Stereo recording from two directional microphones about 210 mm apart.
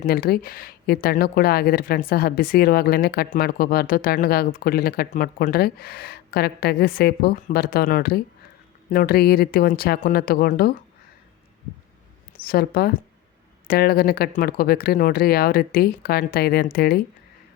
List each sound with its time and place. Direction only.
0.0 s speech: 45° left (ahead or behind)
12.5 s speech: 45° left (ahead or behind)